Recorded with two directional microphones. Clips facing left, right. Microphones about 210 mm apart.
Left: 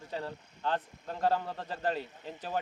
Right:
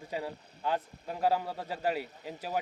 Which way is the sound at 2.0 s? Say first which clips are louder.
Right 1 dB; 35° right (ahead or behind).